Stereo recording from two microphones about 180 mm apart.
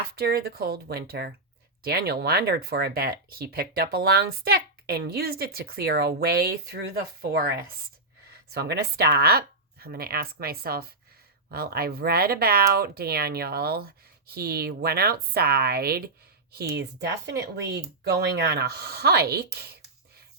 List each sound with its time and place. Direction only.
0.2 s speech: 60° right (ahead or behind)